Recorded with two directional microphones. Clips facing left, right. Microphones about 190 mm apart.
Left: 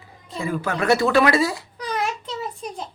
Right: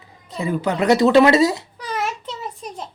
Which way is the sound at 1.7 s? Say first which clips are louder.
Even; centre (ahead or behind).